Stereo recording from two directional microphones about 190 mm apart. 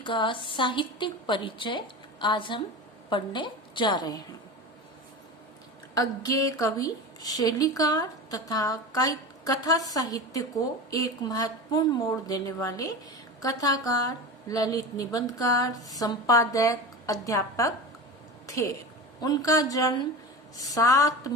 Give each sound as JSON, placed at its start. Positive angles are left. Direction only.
{"t": 0.0, "sound": "a woman's voice", "side_deg": 25}
{"t": 5.9, "sound": "a woman's voice", "side_deg": 20}
{"t": 19.2, "sound": "a woman's voice", "side_deg": 20}